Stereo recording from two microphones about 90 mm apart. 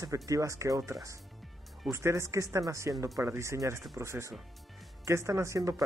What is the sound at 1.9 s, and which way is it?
Speech, 30° right (ahead or behind).